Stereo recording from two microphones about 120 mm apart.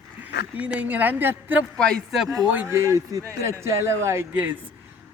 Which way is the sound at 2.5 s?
20° right (ahead or behind).